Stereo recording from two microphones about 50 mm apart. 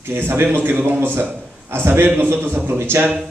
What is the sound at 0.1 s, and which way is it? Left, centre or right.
A man's voice, right.